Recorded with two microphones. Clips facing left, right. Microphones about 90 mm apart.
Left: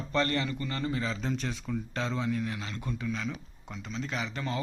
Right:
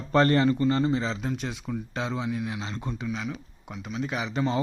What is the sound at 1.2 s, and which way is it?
Speech, 10° right (ahead or behind).